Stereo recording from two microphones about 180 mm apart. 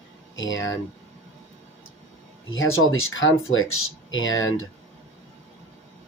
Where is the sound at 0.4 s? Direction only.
90° left.